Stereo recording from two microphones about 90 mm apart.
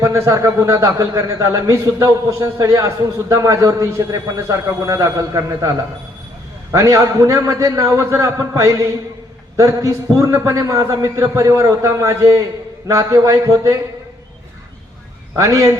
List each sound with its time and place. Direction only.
0.0 s a man's voice: 35° right (ahead or behind)
15.4 s a man's voice: 35° right (ahead or behind)